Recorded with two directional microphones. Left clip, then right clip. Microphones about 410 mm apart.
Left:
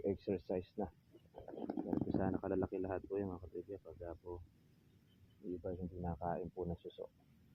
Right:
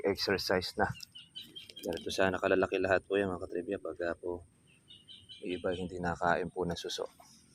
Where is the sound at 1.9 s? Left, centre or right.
Centre.